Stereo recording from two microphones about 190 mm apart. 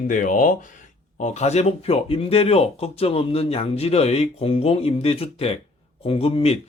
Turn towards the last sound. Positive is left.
turn(degrees=30)  # may be behind; listen again after turning